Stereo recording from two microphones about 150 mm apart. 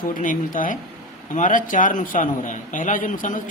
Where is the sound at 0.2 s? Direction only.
65° left (ahead or behind).